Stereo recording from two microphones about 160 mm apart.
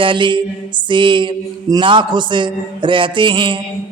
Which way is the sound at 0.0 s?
30° right (ahead or behind).